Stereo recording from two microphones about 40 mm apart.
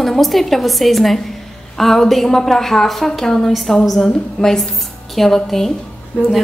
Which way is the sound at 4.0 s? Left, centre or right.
Centre.